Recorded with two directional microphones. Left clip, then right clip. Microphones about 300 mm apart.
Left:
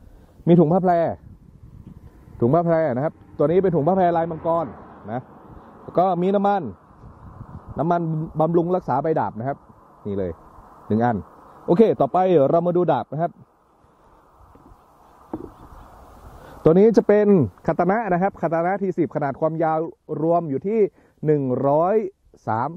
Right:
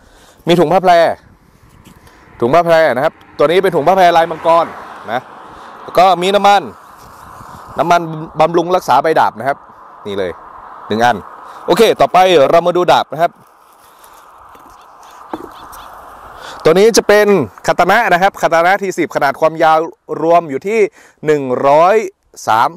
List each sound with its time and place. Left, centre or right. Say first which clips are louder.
0.6 s speech: right 10 dB; right
0.9 s speech: right 11 dB; centre
2.3 s speech: right 10 dB; centre
4.6 s a sound: right 12 dB; centre
6.0 s speech: right 12 dB; centre
7.0 s a sound: right 13 dB; centre
8.0 s speech: right 9 dB; centre
10.0 s a sound: right 8 dB; centre
12.4 s speech: right 9 dB; right
12.6 s speech: right 10 dB; centre
15.3 s a sound: right 8 dB; centre
17.0 s speech: right 8 dB; centre
21.6 s speech: right 11 dB; right